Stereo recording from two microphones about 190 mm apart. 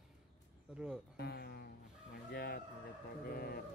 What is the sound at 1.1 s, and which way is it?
Speech, 55° left (ahead or behind).